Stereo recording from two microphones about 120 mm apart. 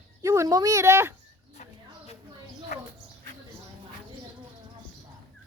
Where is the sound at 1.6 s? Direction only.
90° left.